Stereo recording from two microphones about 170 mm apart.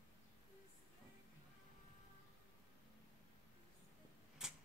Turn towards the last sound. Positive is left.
turn(degrees=0)  # may be behind; listen again after turning